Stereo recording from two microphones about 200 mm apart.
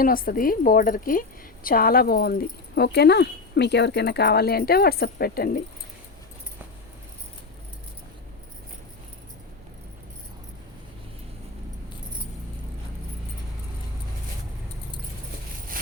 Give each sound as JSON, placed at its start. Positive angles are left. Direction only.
{"t": 0.0, "sound": "speech", "side_deg": 45}